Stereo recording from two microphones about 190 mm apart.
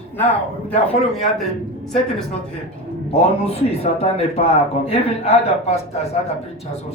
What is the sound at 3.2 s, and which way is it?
Speech, 35° left (ahead or behind).